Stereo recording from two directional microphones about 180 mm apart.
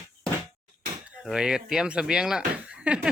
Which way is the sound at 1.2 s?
5° right (ahead or behind).